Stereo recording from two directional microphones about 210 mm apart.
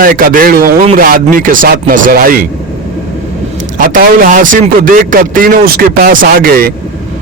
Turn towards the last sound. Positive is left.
turn(degrees=-45)  # may be behind; listen again after turning